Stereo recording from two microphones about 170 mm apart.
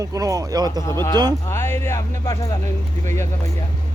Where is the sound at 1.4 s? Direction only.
15° left (ahead or behind).